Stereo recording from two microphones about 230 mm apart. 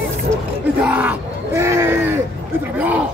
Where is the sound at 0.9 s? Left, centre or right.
Centre.